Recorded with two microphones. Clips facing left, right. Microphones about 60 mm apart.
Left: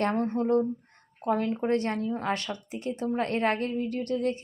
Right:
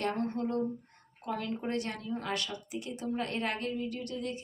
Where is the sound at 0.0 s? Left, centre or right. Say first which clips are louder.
Left 6 dB; left.